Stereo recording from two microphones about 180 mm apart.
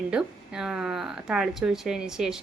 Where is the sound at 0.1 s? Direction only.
5° right (ahead or behind).